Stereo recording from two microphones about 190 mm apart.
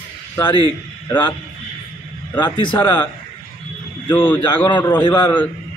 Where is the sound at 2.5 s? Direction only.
25° left (ahead or behind).